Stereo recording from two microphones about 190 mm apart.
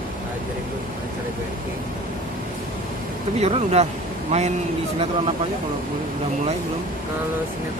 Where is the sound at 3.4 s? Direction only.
35° right (ahead or behind).